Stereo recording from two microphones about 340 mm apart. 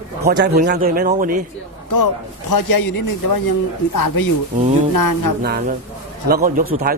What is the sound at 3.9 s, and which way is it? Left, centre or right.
Speech, left.